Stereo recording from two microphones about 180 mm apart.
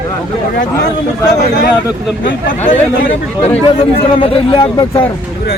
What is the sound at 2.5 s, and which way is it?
Speech, 45° left (ahead or behind).